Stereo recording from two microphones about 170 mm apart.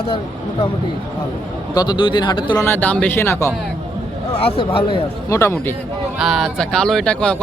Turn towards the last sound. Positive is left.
turn(degrees=5)  # may be behind; listen again after turning